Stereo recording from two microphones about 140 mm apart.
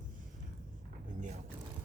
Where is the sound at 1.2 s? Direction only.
60° right (ahead or behind).